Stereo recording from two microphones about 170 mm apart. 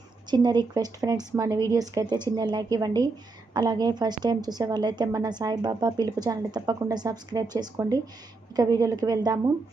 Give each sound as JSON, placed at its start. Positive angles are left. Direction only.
{"t": 0.3, "sound": "a woman's voice", "side_deg": -25}